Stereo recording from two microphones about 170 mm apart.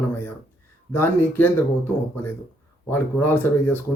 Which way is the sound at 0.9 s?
10° left (ahead or behind).